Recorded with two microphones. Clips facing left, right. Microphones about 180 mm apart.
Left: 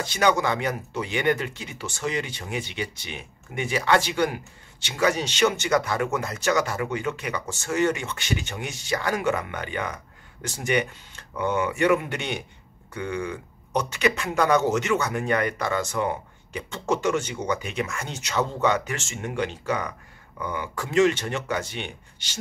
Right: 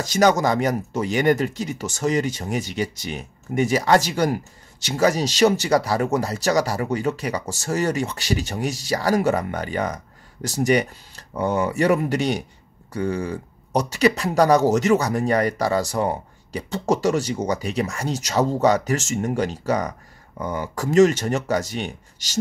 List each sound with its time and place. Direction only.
0.0 s speech: 40° right (ahead or behind)